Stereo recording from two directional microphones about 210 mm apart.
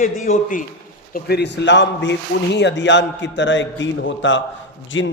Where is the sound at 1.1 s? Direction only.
50° left (ahead or behind).